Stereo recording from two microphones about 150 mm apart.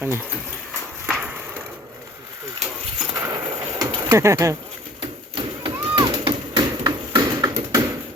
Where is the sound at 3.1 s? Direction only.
20° right (ahead or behind).